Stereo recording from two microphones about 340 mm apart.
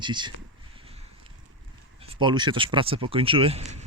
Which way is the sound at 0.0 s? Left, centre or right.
Centre.